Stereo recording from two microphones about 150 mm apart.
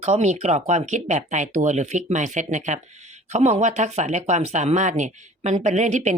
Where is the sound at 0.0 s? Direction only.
50° right (ahead or behind).